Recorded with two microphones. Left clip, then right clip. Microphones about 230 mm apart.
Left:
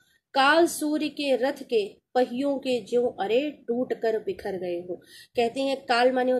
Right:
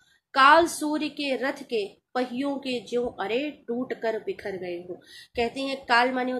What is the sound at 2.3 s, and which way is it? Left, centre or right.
Speech, right.